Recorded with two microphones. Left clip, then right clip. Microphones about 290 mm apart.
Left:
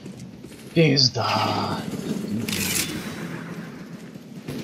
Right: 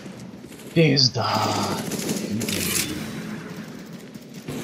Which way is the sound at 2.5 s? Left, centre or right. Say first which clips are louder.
Left 1 dB; centre.